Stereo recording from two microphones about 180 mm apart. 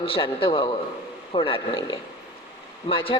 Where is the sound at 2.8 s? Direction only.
30° left (ahead or behind).